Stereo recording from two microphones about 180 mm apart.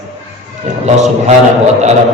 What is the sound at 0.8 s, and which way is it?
Speech, 40° right (ahead or behind).